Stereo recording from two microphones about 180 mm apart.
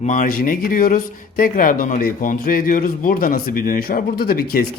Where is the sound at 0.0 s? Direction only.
45° left (ahead or behind).